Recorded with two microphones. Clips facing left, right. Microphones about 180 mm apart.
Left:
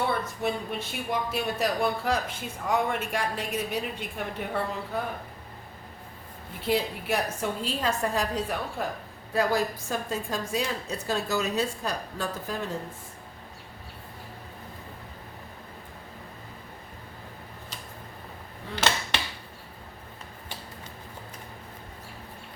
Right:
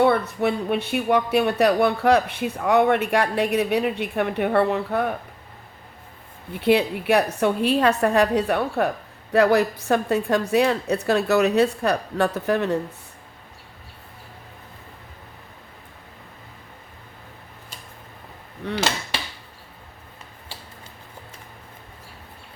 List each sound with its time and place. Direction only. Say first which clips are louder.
0.0 s speech: right 9 dB; 65° right (ahead or behind)
6.6 s speech: right 8 dB; 70° right (ahead or behind)
18.6 s speech: right 10 dB; 75° right (ahead or behind)